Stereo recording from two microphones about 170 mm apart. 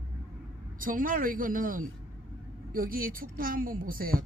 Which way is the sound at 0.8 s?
55° right (ahead or behind).